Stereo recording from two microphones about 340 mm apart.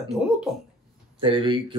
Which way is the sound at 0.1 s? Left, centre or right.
Centre.